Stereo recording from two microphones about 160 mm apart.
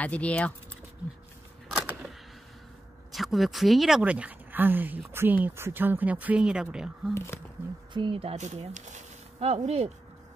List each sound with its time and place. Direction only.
0.0 s speech: 10° left (ahead or behind)
3.1 s speech: centre (ahead or behind)
7.9 s speech: 30° right (ahead or behind)